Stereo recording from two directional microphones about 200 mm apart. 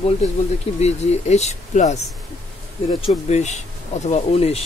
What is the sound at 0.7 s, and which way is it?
Speech, 35° left (ahead or behind).